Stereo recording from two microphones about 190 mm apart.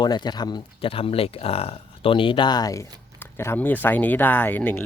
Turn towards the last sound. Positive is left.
turn(degrees=10)  # may be behind; listen again after turning